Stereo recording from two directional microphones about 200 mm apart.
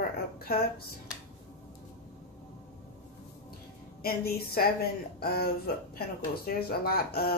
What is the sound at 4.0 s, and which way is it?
A woman's voice, 50° left (ahead or behind).